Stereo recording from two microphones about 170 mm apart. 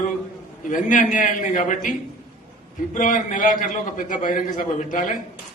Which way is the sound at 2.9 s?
50° left (ahead or behind).